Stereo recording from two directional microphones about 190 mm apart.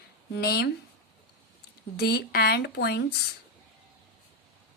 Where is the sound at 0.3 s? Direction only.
55° left (ahead or behind).